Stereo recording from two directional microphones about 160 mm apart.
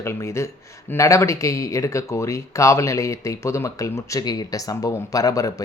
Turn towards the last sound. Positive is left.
turn(degrees=20)  # may be behind; listen again after turning